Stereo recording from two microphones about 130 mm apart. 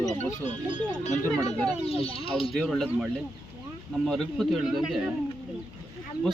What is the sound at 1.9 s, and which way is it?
Speech, 50° left (ahead or behind).